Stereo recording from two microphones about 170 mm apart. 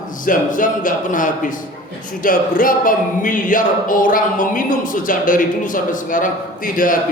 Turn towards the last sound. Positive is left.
turn(degrees=55)  # may be behind; listen again after turning